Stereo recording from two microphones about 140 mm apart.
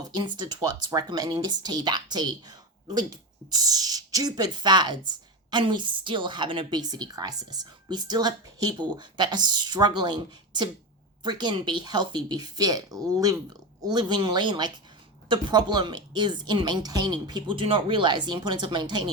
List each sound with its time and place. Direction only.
0.0 s speech: 30° right (ahead or behind)